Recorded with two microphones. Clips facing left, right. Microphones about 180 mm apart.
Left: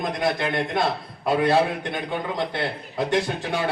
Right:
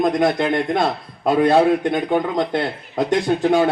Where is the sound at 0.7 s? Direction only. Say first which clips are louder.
Right 4 dB; 50° right (ahead or behind).